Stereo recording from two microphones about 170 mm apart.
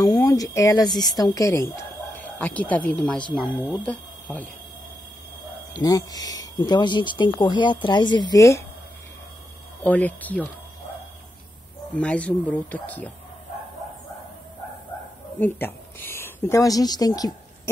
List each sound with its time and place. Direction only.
0.0 s speech: 20° left (ahead or behind)
5.7 s speech: 20° left (ahead or behind)
9.8 s speech: 10° left (ahead or behind)
11.9 s speech: 5° left (ahead or behind)
15.3 s speech: 10° left (ahead or behind)